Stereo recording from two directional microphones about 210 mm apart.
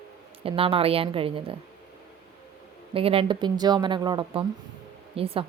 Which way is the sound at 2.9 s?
25° right (ahead or behind).